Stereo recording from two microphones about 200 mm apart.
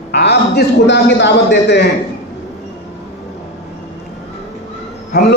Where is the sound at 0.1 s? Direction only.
55° left (ahead or behind).